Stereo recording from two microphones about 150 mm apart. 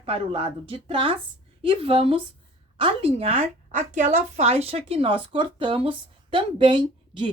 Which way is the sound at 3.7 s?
55° right (ahead or behind).